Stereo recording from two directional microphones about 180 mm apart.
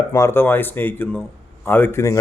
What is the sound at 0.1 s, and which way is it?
A man's voice, 15° left (ahead or behind).